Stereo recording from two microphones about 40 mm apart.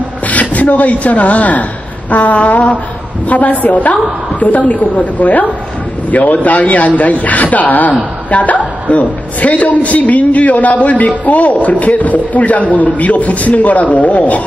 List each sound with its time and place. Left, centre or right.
0.3 s a woman's voice: left